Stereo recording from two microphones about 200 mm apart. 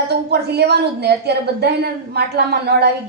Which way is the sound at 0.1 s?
55° right (ahead or behind).